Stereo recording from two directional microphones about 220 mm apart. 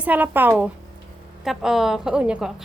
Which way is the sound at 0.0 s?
5° right (ahead or behind).